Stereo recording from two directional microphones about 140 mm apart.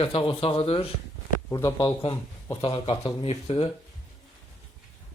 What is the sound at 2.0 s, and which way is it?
Speech, 40° left (ahead or behind).